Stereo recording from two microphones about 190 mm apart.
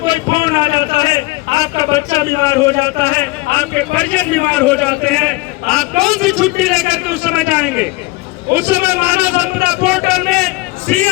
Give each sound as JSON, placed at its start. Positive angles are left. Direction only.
{"t": 0.0, "sound": "a man's voice", "side_deg": 25}